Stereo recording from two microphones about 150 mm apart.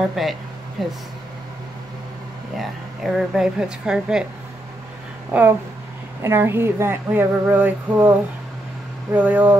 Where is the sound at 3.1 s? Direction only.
5° right (ahead or behind).